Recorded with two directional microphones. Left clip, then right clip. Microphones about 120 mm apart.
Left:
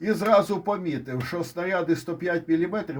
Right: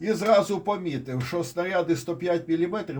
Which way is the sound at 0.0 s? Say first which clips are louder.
Even; 40° left (ahead or behind).